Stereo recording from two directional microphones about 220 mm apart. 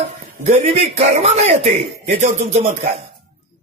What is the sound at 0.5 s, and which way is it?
A man's voice, 25° right (ahead or behind).